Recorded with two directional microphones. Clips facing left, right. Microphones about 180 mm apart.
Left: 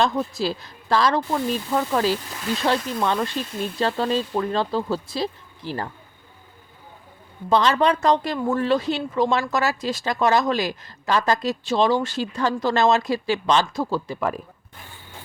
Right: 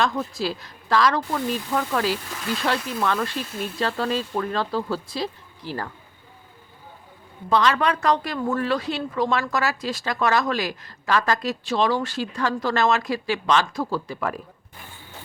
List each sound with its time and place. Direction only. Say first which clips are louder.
0.0 s speech: left 2 dB; 25° left (ahead or behind)
7.5 s speech: left 2 dB; 25° left (ahead or behind)